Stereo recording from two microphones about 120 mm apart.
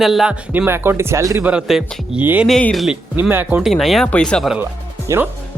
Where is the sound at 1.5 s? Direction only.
5° right (ahead or behind).